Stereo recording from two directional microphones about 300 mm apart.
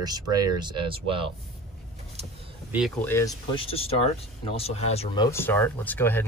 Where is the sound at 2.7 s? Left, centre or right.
Centre.